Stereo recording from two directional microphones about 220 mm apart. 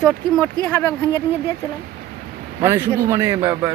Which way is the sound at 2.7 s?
15° right (ahead or behind).